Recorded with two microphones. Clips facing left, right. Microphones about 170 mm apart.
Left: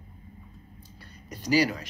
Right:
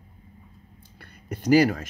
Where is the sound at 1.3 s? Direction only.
50° right (ahead or behind).